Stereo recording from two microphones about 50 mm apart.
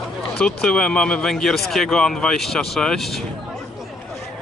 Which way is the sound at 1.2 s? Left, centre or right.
Centre.